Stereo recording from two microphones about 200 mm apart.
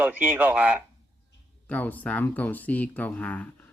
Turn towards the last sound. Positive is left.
turn(degrees=5)  # may be behind; listen again after turning